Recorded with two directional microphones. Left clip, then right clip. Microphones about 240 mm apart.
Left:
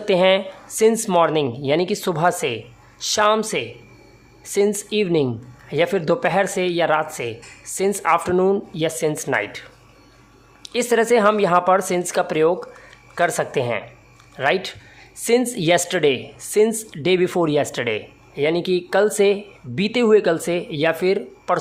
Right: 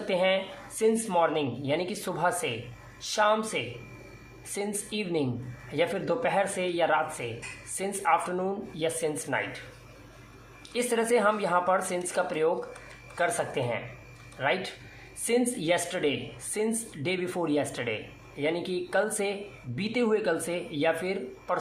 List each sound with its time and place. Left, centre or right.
0.1 s speech: left
10.6 s speech: left